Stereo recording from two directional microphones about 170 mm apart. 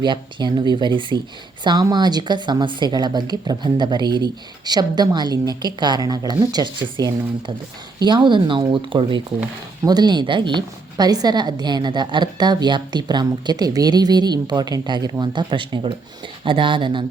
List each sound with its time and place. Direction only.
0.0 s speech: 25° right (ahead or behind)